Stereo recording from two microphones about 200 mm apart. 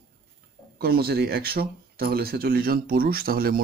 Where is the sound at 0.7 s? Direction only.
50° right (ahead or behind).